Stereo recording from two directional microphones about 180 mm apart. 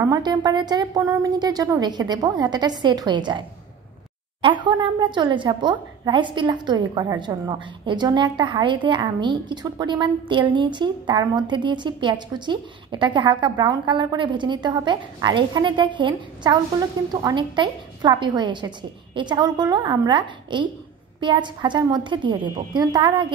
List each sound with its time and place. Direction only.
0.0 s a woman's voice: 20° right (ahead or behind)